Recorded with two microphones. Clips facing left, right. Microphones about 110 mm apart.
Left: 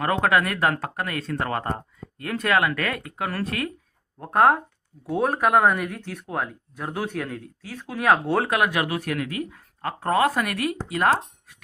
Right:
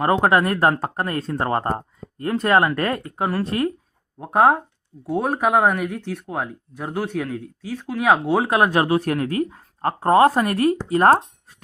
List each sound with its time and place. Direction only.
0.0 s speech: 30° right (ahead or behind)
4.2 s speech: 15° right (ahead or behind)
8.4 s speech: 30° right (ahead or behind)